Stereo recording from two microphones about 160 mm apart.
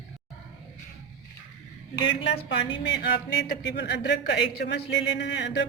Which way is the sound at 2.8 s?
90° left.